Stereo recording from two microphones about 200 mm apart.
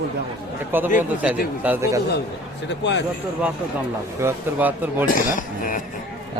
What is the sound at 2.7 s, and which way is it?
Speech, 65° left (ahead or behind).